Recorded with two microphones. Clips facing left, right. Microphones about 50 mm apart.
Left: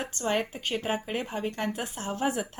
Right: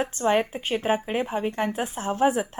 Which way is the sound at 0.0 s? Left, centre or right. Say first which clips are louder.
Right 6 dB; right.